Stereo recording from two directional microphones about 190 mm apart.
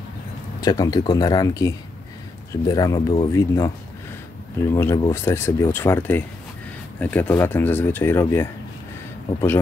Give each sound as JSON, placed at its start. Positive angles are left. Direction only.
{"t": 0.6, "sound": "speech", "side_deg": 20}
{"t": 4.7, "sound": "speech", "side_deg": 15}